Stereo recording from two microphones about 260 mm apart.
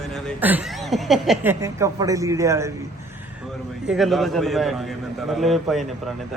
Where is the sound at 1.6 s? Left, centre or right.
Centre.